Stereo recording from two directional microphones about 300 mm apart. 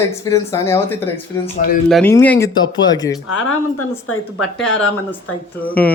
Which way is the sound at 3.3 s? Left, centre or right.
Left.